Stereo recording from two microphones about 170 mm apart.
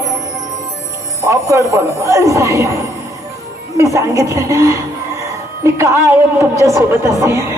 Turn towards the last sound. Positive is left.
turn(degrees=-15)  # may be behind; listen again after turning